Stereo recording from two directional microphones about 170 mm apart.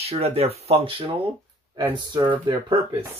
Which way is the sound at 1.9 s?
25° right (ahead or behind).